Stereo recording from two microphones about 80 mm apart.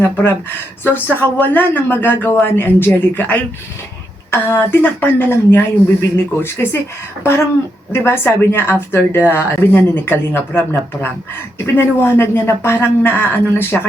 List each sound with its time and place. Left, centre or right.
0.0 s a woman's voice: left
7.9 s speech: left